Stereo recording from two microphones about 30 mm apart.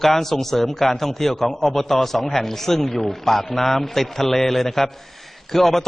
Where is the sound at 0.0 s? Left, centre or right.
Centre.